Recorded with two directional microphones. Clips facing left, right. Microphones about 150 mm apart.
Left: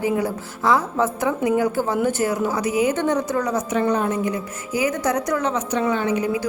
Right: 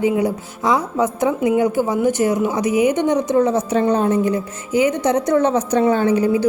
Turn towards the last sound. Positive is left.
turn(degrees=-35)  # may be behind; listen again after turning